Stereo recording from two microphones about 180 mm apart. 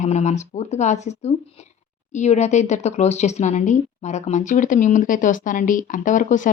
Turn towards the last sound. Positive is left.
turn(degrees=45)  # may be behind; listen again after turning